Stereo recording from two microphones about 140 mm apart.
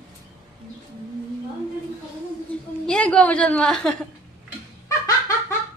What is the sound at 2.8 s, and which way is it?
A woman's voice, 5° left (ahead or behind).